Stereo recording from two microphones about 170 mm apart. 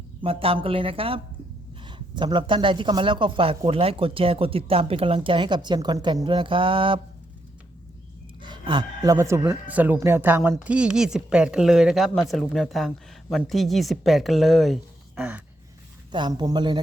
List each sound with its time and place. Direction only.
0.2 s speech: 35° right (ahead or behind)
8.4 s a sound: 25° right (ahead or behind)
9.1 s speech: 15° right (ahead or behind)
16.1 s speech: 25° right (ahead or behind)